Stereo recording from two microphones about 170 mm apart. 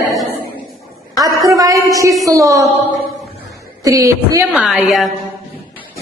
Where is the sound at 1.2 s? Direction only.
20° right (ahead or behind).